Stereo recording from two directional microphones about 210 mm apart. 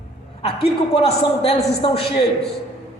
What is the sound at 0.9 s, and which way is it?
A man's voice, 30° left (ahead or behind).